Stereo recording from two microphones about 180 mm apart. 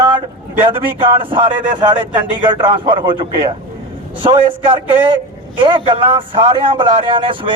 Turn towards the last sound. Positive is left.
turn(degrees=-30)  # may be behind; listen again after turning